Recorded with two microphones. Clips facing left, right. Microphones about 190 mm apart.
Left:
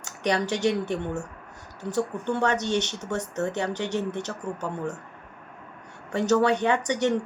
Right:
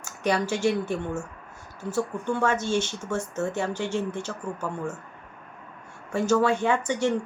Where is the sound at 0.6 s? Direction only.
20° left (ahead or behind).